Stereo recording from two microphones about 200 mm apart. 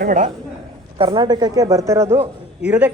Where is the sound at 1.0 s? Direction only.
20° right (ahead or behind).